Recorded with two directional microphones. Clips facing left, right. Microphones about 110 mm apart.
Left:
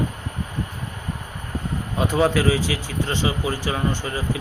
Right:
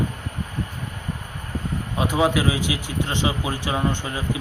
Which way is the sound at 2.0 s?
10° right (ahead or behind).